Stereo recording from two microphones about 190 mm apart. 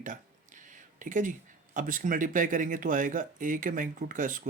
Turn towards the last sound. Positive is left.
turn(degrees=-45)  # may be behind; listen again after turning